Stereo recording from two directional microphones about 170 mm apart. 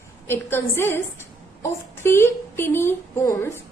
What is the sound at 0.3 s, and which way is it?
A woman's voice, 15° left (ahead or behind).